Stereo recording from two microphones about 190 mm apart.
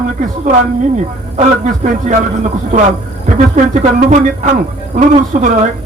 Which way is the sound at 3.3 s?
40° right (ahead or behind).